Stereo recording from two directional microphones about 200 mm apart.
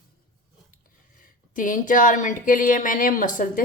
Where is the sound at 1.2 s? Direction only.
40° left (ahead or behind).